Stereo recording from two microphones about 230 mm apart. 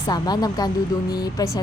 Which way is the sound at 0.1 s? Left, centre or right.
Centre.